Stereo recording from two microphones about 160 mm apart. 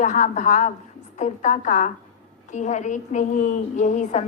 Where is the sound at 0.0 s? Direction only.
50° left (ahead or behind).